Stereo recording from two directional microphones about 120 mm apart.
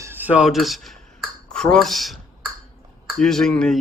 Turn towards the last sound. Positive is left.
turn(degrees=5)  # may be behind; listen again after turning